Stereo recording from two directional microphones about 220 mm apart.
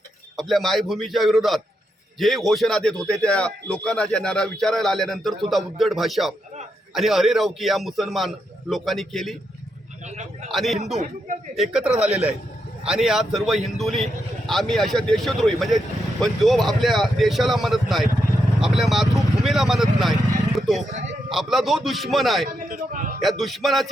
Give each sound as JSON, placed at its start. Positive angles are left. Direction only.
{"t": 0.3, "sound": "a man's voice", "side_deg": 0}
{"t": 10.1, "sound": "a man's voice", "side_deg": -30}
{"t": 10.5, "sound": "a man's voice", "side_deg": 0}
{"t": 10.9, "sound": "a man's voice", "side_deg": -35}
{"t": 11.5, "sound": "a man's voice", "side_deg": 0}
{"t": 11.9, "sound": "a man's voice", "side_deg": -30}
{"t": 12.8, "sound": "a man's voice", "side_deg": -5}
{"t": 20.6, "sound": "a sound", "side_deg": 0}
{"t": 21.2, "sound": "a man's voice", "side_deg": 0}
{"t": 22.7, "sound": "a sound", "side_deg": -35}
{"t": 23.4, "sound": "a man's voice", "side_deg": 0}